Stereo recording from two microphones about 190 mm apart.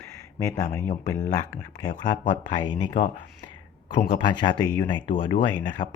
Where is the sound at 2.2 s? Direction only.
20° left (ahead or behind).